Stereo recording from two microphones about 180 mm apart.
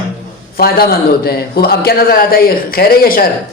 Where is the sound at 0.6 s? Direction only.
60° left (ahead or behind).